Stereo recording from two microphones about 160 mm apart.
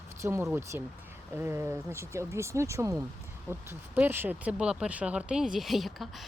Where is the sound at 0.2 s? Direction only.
15° right (ahead or behind).